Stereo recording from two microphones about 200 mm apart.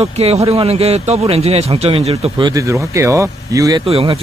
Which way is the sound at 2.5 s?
15° right (ahead or behind).